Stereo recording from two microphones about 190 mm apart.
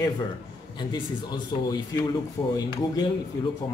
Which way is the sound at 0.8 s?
25° left (ahead or behind).